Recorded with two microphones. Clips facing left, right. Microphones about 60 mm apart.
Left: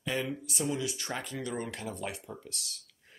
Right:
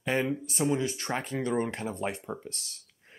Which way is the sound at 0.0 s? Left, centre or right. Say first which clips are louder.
Right 5 dB; right.